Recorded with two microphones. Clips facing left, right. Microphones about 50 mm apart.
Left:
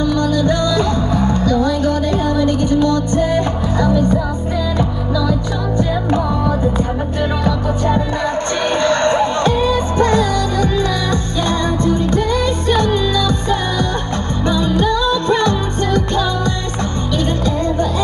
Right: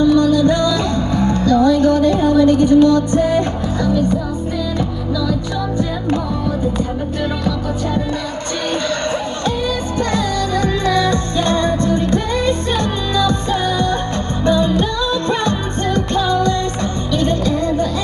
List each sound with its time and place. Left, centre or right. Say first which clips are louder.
0.4 s music: right 2 dB; centre
0.7 s music: left 1 dB; centre
2.3 s music: right 7 dB; centre
8.8 s a sound: left 6 dB; left
10.0 s music: left 2 dB; left
10.9 s music: right 3 dB; centre
13.3 s music: even; centre